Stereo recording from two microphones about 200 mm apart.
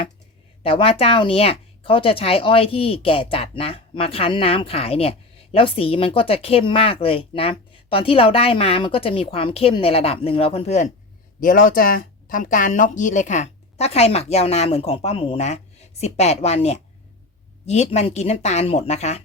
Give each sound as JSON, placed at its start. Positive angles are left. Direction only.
{"t": 0.6, "sound": "speech", "side_deg": 30}
{"t": 11.3, "sound": "speech", "side_deg": 45}